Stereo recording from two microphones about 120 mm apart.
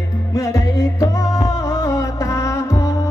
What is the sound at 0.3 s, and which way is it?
Music, 30° left (ahead or behind).